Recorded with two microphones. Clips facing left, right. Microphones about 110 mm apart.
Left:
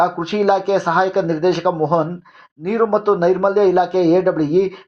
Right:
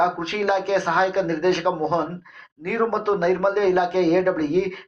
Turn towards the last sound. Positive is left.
turn(degrees=25)  # may be behind; listen again after turning